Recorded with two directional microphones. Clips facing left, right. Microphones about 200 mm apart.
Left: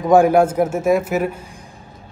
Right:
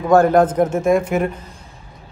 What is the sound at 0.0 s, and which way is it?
Speech, 15° left (ahead or behind).